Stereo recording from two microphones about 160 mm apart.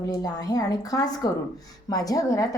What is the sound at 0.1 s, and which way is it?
A woman's voice, 25° left (ahead or behind).